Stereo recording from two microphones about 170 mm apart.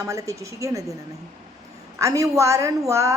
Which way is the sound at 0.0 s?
20° right (ahead or behind).